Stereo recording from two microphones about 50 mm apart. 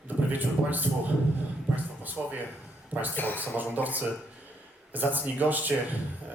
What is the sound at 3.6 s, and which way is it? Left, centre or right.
Speech, right.